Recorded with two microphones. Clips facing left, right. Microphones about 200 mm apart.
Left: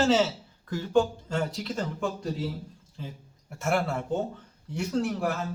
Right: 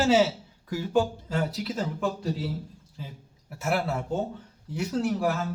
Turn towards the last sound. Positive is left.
turn(degrees=0)  # may be behind; listen again after turning